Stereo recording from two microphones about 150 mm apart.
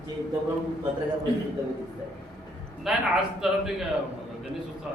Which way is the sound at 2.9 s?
Centre (ahead or behind).